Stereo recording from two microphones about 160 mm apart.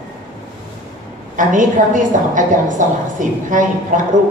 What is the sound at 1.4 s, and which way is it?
A woman's voice, 55° right (ahead or behind).